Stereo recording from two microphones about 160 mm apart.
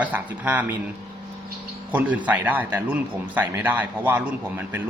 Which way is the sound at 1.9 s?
10° right (ahead or behind).